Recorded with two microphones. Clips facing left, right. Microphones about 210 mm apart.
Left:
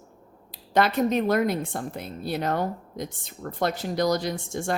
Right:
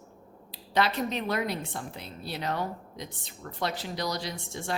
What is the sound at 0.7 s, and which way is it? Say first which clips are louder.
A woman's voice: left 6 dB; 50° left (ahead or behind).